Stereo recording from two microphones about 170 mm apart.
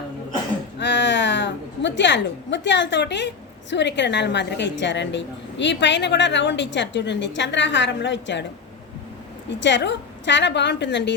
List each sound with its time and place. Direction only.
0.8 s speech: 90° left
9.6 s speech: 90° left